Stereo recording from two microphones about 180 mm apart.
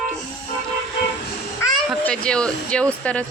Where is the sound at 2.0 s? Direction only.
5° left (ahead or behind).